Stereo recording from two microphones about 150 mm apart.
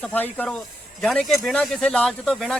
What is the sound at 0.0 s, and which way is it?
Speech, 10° left (ahead or behind).